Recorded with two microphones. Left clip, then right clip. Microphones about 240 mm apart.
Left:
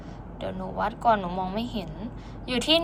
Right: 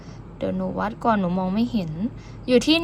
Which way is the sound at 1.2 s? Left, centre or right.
Right.